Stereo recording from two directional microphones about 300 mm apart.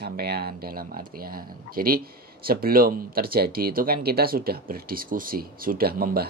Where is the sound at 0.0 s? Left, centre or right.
Right.